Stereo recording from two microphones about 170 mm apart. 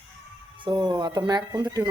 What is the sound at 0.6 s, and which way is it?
Speech, 25° right (ahead or behind).